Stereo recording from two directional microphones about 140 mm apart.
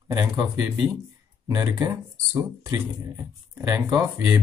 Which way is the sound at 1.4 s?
25° right (ahead or behind).